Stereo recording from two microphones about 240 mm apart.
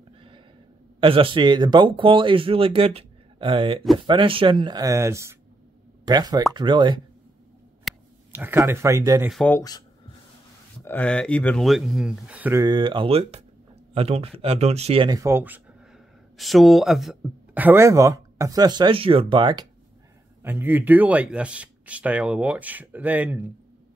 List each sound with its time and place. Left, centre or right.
1.0 s speech: right
7.8 s speech: centre
9.3 s speech: centre
20.4 s speech: centre